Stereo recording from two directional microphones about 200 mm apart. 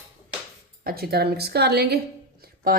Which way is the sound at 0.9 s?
50° right (ahead or behind).